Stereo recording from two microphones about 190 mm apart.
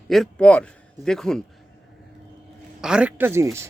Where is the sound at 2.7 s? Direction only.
5° right (ahead or behind).